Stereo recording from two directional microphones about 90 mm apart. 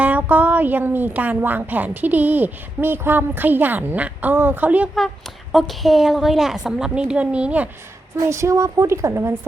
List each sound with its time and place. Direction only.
0.0 s a woman's voice: 15° right (ahead or behind)
4.9 s a woman's voice: centre (ahead or behind)
8.1 s a woman's voice: 35° right (ahead or behind)